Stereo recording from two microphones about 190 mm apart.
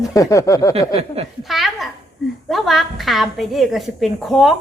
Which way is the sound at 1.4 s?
Centre (ahead or behind).